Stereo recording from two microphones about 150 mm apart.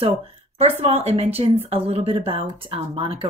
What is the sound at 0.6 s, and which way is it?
Speech, 45° right (ahead or behind).